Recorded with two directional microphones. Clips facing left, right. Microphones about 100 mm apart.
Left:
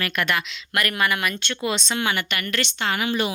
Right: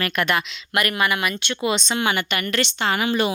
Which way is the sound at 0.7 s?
10° right (ahead or behind).